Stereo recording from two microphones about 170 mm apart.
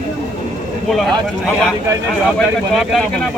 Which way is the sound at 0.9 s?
Centre (ahead or behind).